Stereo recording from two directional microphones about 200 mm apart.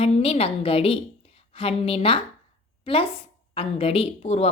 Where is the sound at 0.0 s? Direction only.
30° left (ahead or behind).